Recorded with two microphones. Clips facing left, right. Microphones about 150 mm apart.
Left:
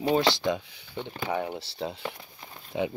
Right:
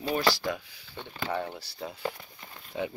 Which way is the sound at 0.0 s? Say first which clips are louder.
Left 4 dB; 25° left (ahead or behind).